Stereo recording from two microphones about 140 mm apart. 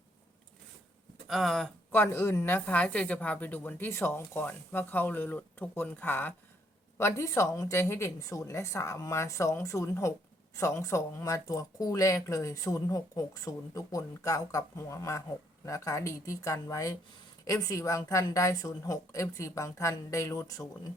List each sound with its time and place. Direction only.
1.3 s speech: centre (ahead or behind)
1.9 s a woman's voice: 15° left (ahead or behind)